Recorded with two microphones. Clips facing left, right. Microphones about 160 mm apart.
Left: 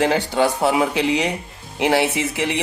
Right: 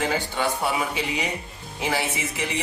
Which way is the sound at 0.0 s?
75° left (ahead or behind).